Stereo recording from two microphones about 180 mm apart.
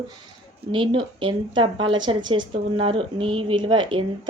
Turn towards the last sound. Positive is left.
turn(degrees=-25)  # may be behind; listen again after turning